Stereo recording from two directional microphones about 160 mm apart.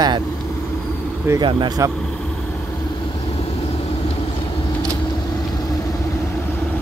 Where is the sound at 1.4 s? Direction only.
30° right (ahead or behind).